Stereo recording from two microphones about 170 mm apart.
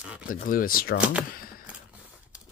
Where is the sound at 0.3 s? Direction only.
55° left (ahead or behind).